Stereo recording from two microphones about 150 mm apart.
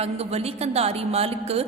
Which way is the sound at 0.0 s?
45° right (ahead or behind).